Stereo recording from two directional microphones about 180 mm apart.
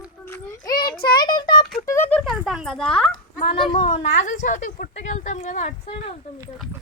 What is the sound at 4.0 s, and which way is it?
Speech, 45° left (ahead or behind).